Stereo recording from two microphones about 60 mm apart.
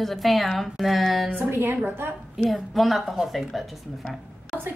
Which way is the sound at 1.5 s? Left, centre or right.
Right.